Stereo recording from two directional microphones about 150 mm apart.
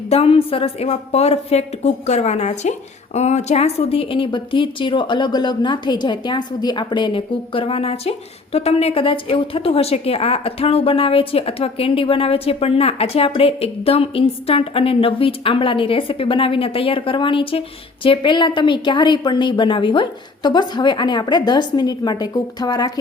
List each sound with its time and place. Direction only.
0.1 s a woman's voice: 40° left (ahead or behind)